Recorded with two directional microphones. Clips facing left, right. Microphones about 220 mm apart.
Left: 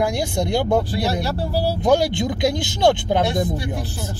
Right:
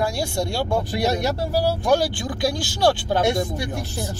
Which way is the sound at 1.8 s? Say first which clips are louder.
Left 3 dB; 20° left (ahead or behind).